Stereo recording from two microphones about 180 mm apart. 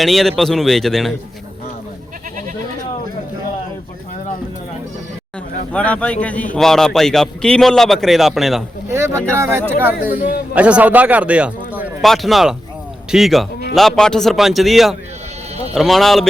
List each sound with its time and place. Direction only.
0.0 s a man's voice: centre (ahead or behind)
5.7 s a man's voice: 5° left (ahead or behind)
8.9 s speech: 15° right (ahead or behind)
10.2 s a man's voice: 55° left (ahead or behind)
10.5 s a man's voice: 5° right (ahead or behind)